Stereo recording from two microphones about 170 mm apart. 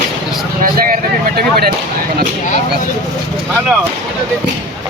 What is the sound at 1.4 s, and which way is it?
Speech, 65° right (ahead or behind).